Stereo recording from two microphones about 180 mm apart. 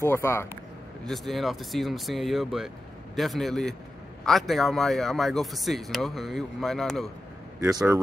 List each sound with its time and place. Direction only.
0.0 s speech: 15° left (ahead or behind)
1.0 s speech: centre (ahead or behind)
7.6 s speech: 15° right (ahead or behind)